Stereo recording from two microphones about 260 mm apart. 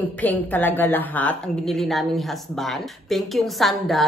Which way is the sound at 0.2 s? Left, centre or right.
Centre.